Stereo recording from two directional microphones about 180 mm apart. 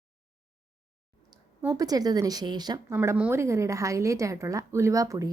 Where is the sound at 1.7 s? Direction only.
20° right (ahead or behind).